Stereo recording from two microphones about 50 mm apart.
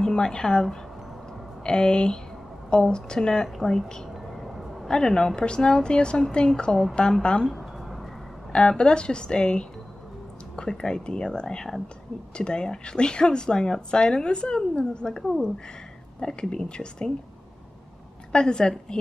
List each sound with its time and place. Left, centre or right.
0.0 s a woman's voice: centre
4.1 s a sound: centre
4.8 s a woman's voice: centre
18.3 s a woman's voice: centre